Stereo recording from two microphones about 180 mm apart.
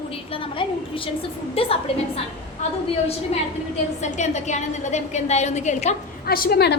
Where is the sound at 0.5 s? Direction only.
30° left (ahead or behind).